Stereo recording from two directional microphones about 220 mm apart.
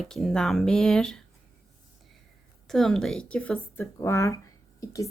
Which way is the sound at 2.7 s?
Centre (ahead or behind).